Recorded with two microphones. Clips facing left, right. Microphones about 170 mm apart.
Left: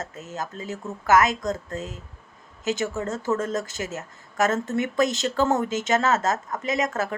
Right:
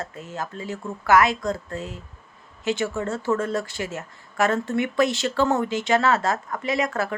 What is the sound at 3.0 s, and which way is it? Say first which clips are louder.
Speech: right 1 dB; 40° left (ahead or behind).